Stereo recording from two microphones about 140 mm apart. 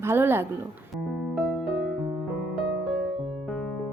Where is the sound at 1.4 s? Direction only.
Centre (ahead or behind).